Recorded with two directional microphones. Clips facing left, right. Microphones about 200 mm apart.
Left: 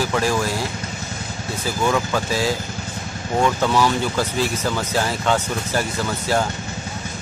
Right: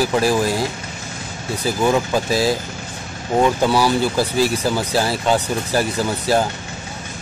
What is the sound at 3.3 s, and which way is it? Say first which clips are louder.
Speech: right 3 dB; 15° right (ahead or behind).